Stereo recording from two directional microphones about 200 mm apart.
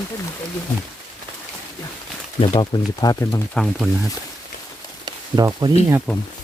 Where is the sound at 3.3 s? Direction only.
Centre (ahead or behind).